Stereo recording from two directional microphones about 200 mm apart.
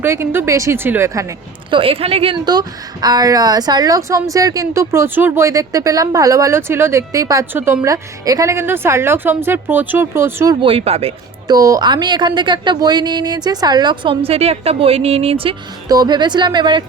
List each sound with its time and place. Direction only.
0.0 s a woman's voice: 10° right (ahead or behind)
1.7 s a woman's voice: 25° right (ahead or behind)
11.5 s a woman's voice: 15° right (ahead or behind)